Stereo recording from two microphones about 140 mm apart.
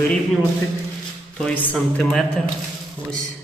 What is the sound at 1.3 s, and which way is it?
A man's voice, 10° left (ahead or behind).